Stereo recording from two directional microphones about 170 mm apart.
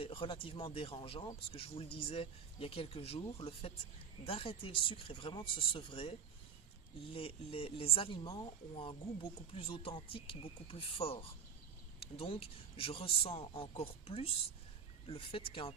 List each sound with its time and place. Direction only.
0.0 s speech: 30° left (ahead or behind)